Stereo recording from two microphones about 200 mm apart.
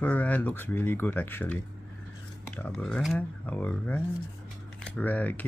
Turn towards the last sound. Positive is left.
turn(degrees=10)  # may be behind; listen again after turning